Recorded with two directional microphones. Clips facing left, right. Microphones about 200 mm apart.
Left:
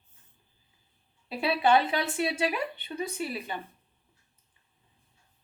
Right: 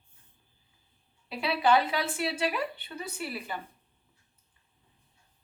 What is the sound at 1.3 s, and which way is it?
Speech, 25° left (ahead or behind).